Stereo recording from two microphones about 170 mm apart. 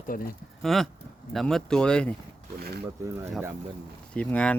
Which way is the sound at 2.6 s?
65° right (ahead or behind).